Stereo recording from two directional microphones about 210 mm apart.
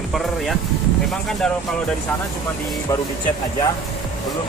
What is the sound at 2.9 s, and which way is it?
Speech, 15° left (ahead or behind).